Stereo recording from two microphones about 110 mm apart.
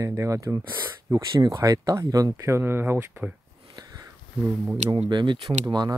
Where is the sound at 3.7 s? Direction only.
35° right (ahead or behind).